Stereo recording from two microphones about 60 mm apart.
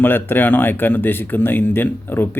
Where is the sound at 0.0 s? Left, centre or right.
Left.